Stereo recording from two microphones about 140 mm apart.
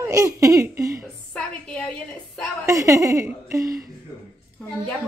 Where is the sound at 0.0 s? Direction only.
25° right (ahead or behind).